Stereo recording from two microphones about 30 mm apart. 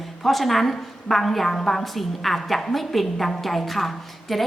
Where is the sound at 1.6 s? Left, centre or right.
Centre.